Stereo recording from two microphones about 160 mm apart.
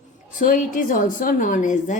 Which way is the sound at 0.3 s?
55° left (ahead or behind).